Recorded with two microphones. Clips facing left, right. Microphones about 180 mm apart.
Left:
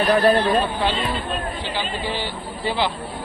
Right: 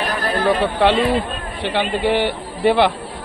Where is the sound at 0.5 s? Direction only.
75° right (ahead or behind).